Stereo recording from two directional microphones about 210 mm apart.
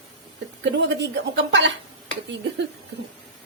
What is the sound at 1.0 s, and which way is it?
Speech, 55° right (ahead or behind).